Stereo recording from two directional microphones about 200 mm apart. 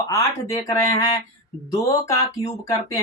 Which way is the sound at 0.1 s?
15° left (ahead or behind).